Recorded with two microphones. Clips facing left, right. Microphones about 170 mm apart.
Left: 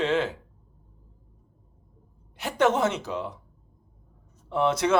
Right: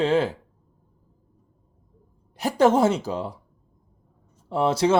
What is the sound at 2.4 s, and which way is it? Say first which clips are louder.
Speech: right 5 dB; 35° right (ahead or behind).